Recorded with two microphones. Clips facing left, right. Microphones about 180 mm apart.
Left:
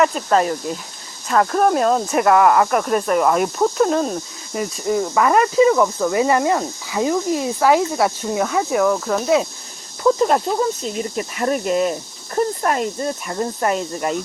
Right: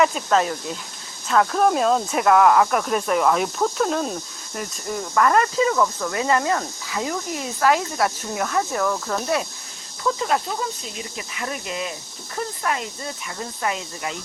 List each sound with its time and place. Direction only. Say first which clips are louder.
0.0 s speech: left 3 dB; centre (ahead or behind)
5.1 s speech: left 2 dB; 10° left (ahead or behind)
8.4 s speech: left 5 dB; 10° left (ahead or behind)
10.0 s speech: left 7 dB; 45° left (ahead or behind)